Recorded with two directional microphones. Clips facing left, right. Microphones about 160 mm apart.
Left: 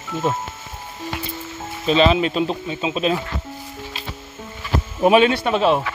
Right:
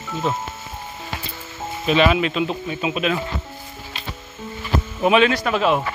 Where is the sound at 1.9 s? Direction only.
30° left (ahead or behind).